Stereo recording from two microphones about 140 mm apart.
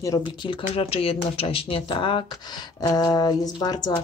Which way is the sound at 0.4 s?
40° left (ahead or behind).